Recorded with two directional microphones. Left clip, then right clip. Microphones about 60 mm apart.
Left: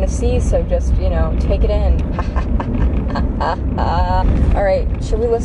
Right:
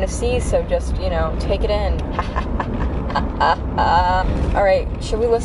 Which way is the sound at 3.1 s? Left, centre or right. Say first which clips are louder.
Right 4 dB; centre.